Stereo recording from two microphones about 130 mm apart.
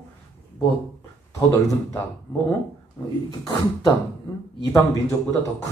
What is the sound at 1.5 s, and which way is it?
Speech, 25° left (ahead or behind).